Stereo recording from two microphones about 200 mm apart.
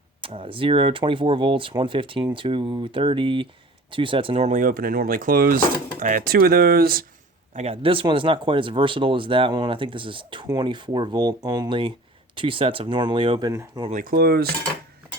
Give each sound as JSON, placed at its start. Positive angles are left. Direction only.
{"t": 0.2, "sound": "speech", "side_deg": -25}
{"t": 7.5, "sound": "speech", "side_deg": -30}
{"t": 13.9, "sound": "speech", "side_deg": -45}